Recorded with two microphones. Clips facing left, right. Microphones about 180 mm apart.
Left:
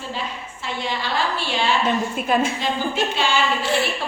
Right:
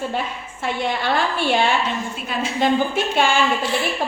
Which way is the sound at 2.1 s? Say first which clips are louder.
Left 6 dB; 50° left (ahead or behind).